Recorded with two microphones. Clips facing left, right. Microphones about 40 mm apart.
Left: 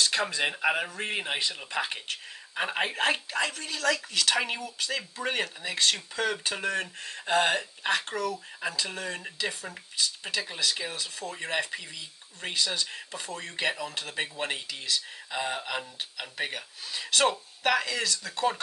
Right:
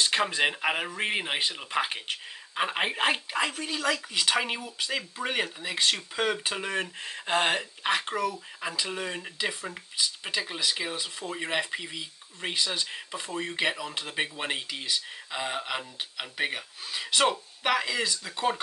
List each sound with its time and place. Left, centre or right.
0.0 s speech: right